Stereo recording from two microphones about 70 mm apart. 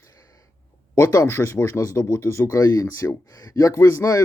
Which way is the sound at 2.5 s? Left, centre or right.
Left.